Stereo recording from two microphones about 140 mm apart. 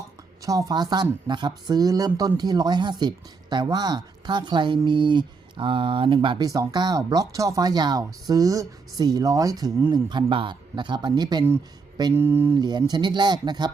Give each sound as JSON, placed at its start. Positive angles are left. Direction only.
{"t": 0.4, "sound": "speech", "side_deg": -25}
{"t": 12.1, "sound": "speech", "side_deg": -15}
{"t": 12.5, "sound": "speech", "side_deg": -30}